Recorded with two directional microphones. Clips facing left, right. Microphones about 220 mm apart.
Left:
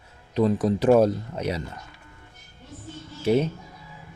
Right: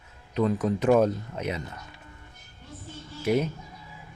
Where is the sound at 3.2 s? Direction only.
30° left (ahead or behind).